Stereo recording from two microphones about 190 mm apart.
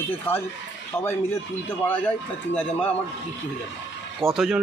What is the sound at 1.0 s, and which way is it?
Speech, 10° left (ahead or behind).